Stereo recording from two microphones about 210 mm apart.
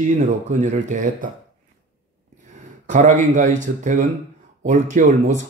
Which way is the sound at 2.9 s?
35° right (ahead or behind).